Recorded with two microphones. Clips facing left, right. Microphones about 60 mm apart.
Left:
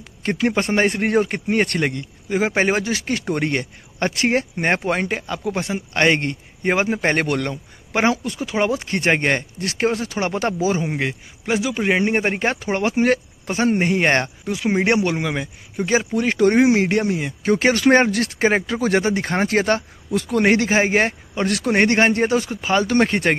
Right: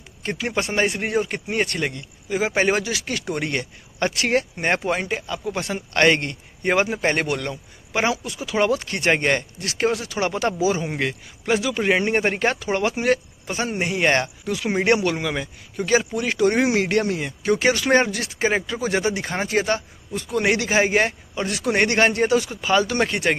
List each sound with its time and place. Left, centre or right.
0.2 s speech: left
5.7 s a man's voice: centre
6.9 s speech: left
8.5 s speech: left
10.8 s a man's voice: centre
12.5 s speech: left
16.2 s speech: left
16.5 s a man's voice: left
17.4 s speech: left
18.1 s speech: left